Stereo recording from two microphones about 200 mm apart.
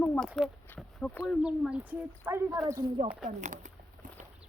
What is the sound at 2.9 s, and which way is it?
Speech, 30° right (ahead or behind).